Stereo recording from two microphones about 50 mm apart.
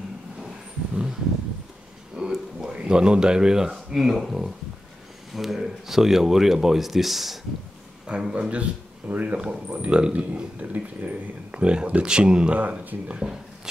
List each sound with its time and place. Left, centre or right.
2.1 s speech: centre
8.1 s speech: right